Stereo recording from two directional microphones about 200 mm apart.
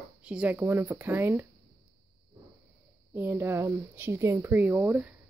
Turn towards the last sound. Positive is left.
turn(degrees=-10)  # may be behind; listen again after turning